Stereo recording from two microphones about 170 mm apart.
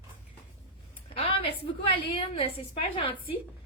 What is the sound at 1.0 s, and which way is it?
A woman's voice, 35° left (ahead or behind).